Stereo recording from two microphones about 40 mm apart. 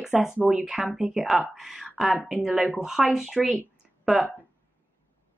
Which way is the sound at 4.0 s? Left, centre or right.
Centre.